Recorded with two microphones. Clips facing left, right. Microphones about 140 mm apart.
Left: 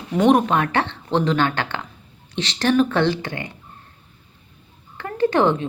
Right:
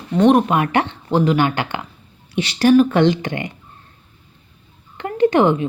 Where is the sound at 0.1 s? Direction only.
Centre (ahead or behind); by 3.5 s 20° right (ahead or behind).